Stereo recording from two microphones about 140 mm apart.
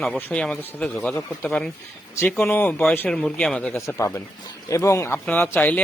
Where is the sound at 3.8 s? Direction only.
20° left (ahead or behind).